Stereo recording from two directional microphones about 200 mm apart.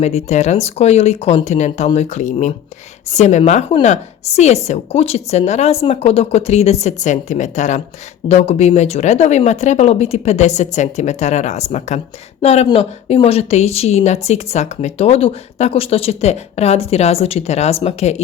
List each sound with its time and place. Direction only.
0.0 s a woman's voice: 35° left (ahead or behind)